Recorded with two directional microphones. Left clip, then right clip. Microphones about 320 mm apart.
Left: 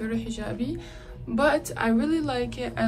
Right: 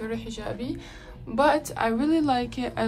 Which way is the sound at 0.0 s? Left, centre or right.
Centre.